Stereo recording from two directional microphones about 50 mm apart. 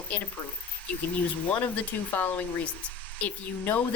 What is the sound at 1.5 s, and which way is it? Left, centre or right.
Speech, left.